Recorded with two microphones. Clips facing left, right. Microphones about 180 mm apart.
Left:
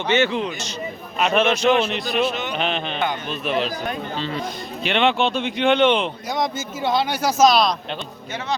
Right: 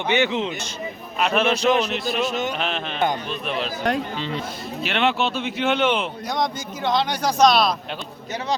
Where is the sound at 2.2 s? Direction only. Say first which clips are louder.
Left 1 dB; 45° right (ahead or behind).